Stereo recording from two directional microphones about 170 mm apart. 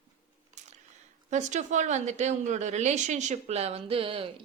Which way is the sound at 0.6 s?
45° right (ahead or behind).